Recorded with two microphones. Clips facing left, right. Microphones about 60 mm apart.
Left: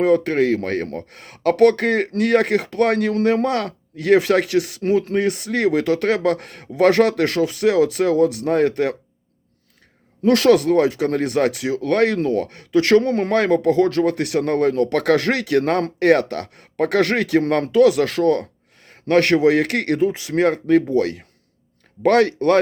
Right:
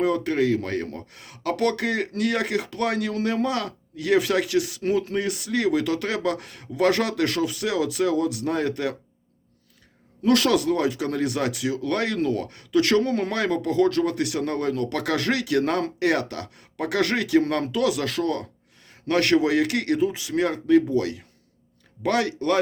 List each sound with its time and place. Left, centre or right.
0.0 s speech: left
10.2 s speech: left